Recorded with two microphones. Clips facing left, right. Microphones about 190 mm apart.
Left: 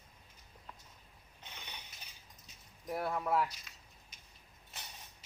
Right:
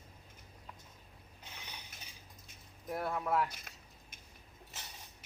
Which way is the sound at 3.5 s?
55° right (ahead or behind).